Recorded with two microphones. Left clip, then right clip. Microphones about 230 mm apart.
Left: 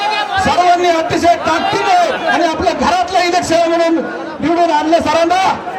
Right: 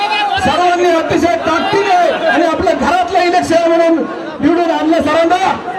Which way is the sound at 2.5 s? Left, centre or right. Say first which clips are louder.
Right 1 dB; left.